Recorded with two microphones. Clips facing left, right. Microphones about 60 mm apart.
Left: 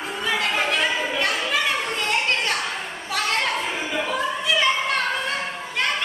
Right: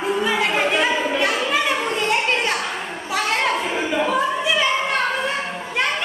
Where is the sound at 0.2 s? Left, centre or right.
Centre.